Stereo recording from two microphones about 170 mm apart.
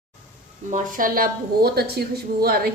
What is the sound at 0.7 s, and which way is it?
Speech, 50° right (ahead or behind).